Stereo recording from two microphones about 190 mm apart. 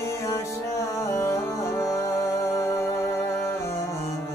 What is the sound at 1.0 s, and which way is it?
Music, 15° left (ahead or behind).